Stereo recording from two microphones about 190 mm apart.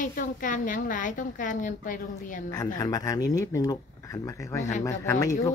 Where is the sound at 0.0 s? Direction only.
45° left (ahead or behind).